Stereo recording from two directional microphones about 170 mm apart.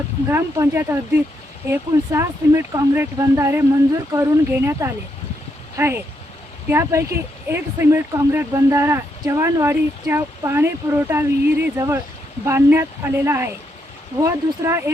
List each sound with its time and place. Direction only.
0.3 s speech: 15° right (ahead or behind)